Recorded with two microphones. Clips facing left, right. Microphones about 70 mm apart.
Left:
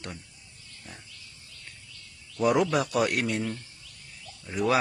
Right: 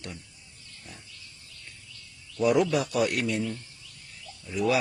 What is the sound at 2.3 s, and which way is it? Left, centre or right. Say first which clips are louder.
A man's voice: even; left.